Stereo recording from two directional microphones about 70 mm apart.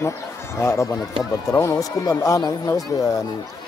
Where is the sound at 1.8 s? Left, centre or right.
Left.